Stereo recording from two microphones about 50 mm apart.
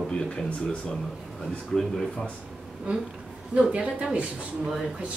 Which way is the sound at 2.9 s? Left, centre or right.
Right.